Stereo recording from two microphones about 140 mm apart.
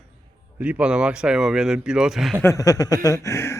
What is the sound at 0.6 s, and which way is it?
Speech, 10° right (ahead or behind).